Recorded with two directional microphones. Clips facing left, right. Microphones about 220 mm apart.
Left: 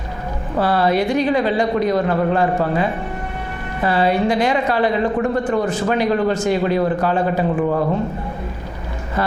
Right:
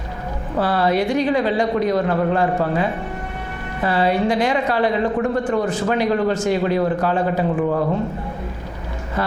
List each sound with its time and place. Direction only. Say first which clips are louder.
0.5 s a woman's voice: left 1 dB; 25° left (ahead or behind)